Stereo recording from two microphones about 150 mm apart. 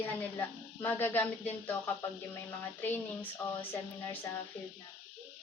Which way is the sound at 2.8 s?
10° left (ahead or behind).